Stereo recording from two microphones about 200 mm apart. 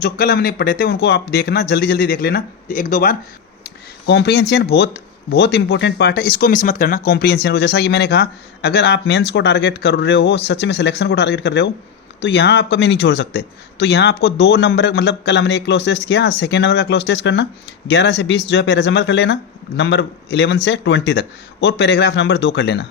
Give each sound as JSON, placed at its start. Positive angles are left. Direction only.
{"t": 0.0, "sound": "speech", "side_deg": 50}
{"t": 4.0, "sound": "speech", "side_deg": 60}